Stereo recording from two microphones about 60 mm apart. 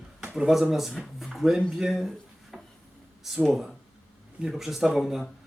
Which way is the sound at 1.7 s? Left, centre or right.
Centre.